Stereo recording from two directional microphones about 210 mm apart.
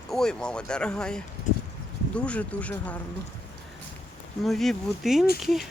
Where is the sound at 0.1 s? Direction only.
5° left (ahead or behind).